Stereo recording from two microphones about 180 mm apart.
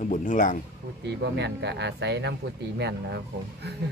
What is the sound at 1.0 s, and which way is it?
Speech, 70° right (ahead or behind).